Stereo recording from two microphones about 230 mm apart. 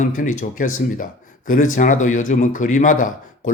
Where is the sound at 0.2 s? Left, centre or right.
Left.